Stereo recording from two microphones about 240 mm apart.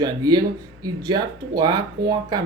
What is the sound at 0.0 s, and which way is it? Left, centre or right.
Speech, centre.